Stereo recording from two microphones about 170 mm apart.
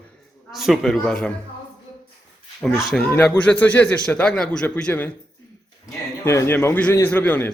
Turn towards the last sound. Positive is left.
turn(degrees=10)  # may be behind; listen again after turning